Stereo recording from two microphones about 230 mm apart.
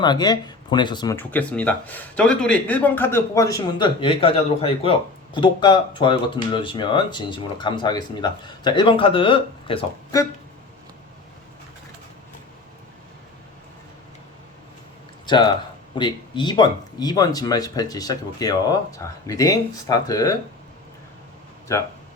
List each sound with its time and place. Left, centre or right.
0.0 s speech: centre
15.3 s speech: centre
21.7 s speech: centre